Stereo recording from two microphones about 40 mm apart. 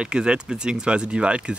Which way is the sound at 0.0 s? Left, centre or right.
Right.